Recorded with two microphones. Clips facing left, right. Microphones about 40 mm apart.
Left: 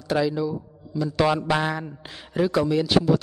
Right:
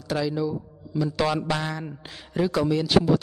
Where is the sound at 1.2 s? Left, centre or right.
Centre.